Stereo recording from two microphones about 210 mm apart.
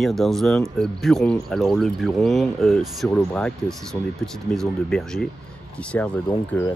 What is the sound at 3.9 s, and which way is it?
Speech, 15° left (ahead or behind).